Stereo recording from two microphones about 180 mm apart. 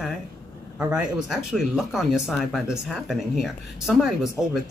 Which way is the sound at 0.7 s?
5° right (ahead or behind).